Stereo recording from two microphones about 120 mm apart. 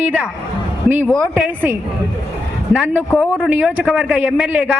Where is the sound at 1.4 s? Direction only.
15° right (ahead or behind).